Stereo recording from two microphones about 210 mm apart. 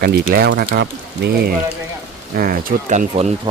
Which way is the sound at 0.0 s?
45° right (ahead or behind).